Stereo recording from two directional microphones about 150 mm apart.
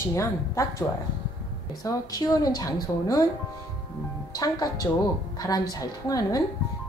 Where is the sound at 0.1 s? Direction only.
20° left (ahead or behind).